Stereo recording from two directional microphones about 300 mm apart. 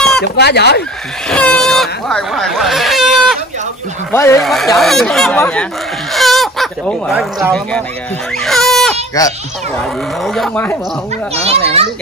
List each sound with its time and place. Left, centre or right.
0.2 s speech: left
1.3 s speech: centre
8.4 s baby cry: centre
9.8 s speech: centre
11.4 s a child's voice: centre